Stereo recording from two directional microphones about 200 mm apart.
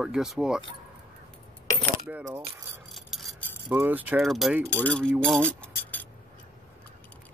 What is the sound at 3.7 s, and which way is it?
Speech, 10° right (ahead or behind).